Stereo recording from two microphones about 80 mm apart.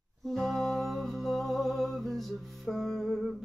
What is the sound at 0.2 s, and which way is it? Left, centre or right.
Music, centre.